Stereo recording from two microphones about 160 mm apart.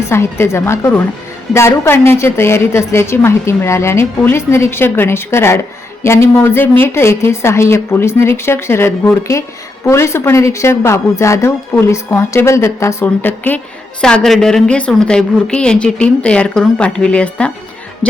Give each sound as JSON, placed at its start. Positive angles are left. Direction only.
{"t": 0.0, "sound": "a woman's voice", "side_deg": 15}